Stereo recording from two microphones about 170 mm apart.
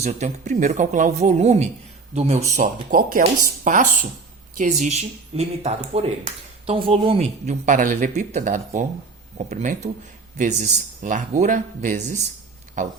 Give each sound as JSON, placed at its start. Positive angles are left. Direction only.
{"t": 0.0, "sound": "speech", "side_deg": -45}
{"t": 2.6, "sound": "speech", "side_deg": -55}